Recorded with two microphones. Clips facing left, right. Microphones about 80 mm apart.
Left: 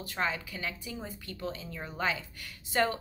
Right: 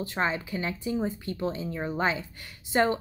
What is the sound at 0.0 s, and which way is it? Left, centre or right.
A woman's voice, right.